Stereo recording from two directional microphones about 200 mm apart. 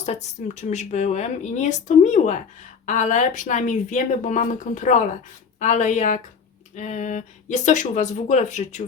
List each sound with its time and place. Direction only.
0.0 s speech: 35° left (ahead or behind)